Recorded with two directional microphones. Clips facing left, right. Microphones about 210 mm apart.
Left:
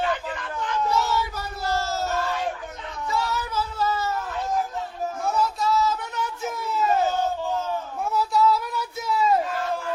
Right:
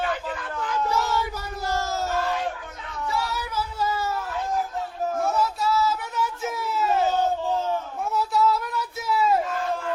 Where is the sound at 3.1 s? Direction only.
10° right (ahead or behind).